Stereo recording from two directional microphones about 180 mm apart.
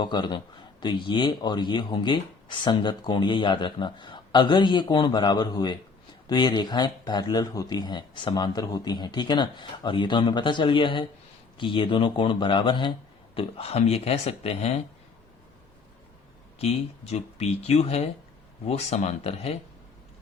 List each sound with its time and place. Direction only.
0.0 s speech: 25° left (ahead or behind)
16.6 s speech: 35° left (ahead or behind)